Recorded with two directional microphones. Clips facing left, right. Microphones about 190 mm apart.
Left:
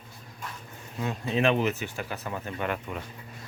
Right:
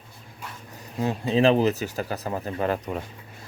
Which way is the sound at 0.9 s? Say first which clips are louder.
Right 6 dB; 30° right (ahead or behind).